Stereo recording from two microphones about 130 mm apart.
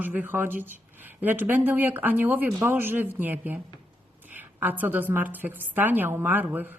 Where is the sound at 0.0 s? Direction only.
15° right (ahead or behind).